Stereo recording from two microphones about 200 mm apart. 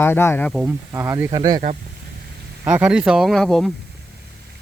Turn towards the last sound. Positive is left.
turn(degrees=0)  # may be behind; listen again after turning